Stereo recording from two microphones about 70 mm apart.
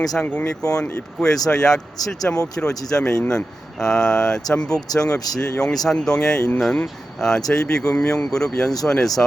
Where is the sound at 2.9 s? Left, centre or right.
Centre.